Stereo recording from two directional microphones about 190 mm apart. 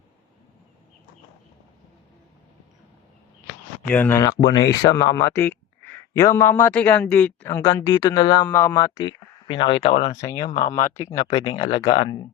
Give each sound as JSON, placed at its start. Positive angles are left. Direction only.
{"t": 3.8, "sound": "speech", "side_deg": 10}